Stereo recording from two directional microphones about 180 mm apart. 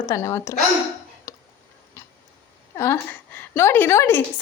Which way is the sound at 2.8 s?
15° left (ahead or behind).